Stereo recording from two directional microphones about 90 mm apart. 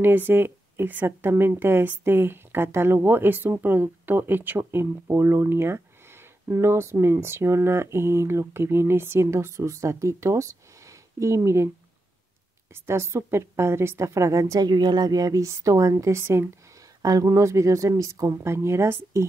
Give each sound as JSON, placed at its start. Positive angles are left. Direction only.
{"t": 0.0, "sound": "a woman's voice", "side_deg": -25}
{"t": 12.7, "sound": "speech", "side_deg": -30}
{"t": 14.7, "sound": "speech", "side_deg": -50}
{"t": 17.0, "sound": "speech", "side_deg": -40}